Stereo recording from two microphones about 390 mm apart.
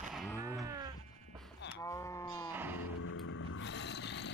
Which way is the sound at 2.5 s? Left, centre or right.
Centre.